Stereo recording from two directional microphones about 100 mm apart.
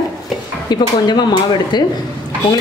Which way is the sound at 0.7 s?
45° left (ahead or behind).